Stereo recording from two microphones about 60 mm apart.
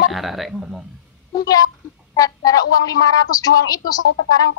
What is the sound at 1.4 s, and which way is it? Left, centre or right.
A woman's voice, left.